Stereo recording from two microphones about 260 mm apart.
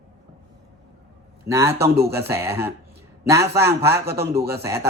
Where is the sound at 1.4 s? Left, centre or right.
Centre.